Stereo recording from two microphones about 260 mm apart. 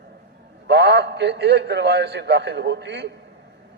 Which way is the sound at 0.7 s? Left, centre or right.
Right.